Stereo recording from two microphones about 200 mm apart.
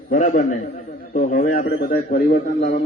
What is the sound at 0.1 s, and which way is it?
A man's voice, 40° left (ahead or behind).